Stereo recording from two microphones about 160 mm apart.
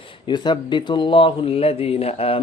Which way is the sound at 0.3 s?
30° left (ahead or behind).